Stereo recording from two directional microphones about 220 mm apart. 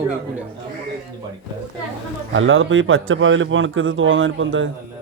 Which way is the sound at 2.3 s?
60° right (ahead or behind).